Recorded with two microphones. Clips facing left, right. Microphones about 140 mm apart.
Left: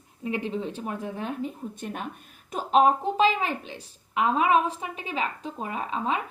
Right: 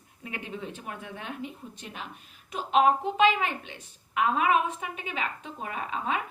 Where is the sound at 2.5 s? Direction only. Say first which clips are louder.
Left 2 dB; 35° left (ahead or behind).